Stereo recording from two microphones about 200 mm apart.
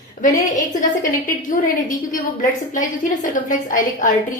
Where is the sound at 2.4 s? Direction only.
40° left (ahead or behind).